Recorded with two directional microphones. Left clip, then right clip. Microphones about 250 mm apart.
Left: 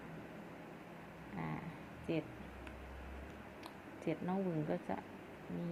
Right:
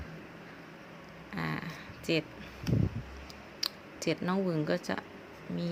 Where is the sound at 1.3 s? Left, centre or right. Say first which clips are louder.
Right 9 dB; right.